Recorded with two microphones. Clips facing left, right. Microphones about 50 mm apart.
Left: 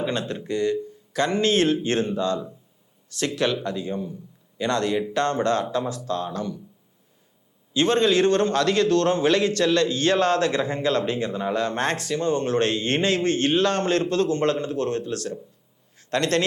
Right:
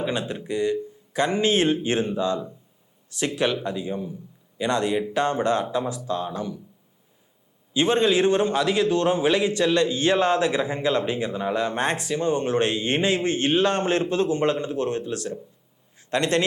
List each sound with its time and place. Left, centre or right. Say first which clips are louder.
0.0 s a man's voice: even; centre
7.7 s a man's voice: even; centre